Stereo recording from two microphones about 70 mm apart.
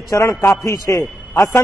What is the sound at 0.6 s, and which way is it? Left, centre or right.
Speech, left.